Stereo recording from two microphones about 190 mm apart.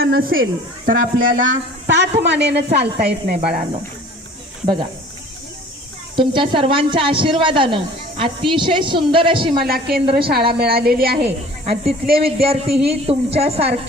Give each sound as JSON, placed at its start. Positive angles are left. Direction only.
{"t": 0.0, "sound": "a sound", "side_deg": -55}
{"t": 0.9, "sound": "speech", "side_deg": -45}
{"t": 1.5, "sound": "a woman's voice", "side_deg": -70}
{"t": 4.6, "sound": "a woman's voice", "side_deg": -25}
{"t": 6.1, "sound": "a woman's voice", "side_deg": -25}
{"t": 9.6, "sound": "a woman's voice", "side_deg": -55}
{"t": 11.2, "sound": "a woman's voice", "side_deg": -30}